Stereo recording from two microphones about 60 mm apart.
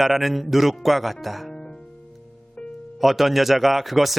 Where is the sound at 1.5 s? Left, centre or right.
Centre.